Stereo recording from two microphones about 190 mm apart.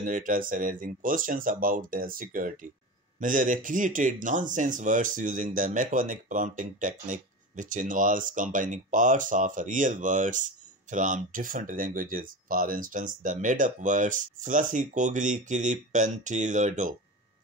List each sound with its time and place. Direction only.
0.0 s speech: 45° right (ahead or behind)